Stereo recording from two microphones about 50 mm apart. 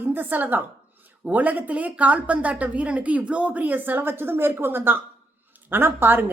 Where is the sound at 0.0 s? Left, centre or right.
Right.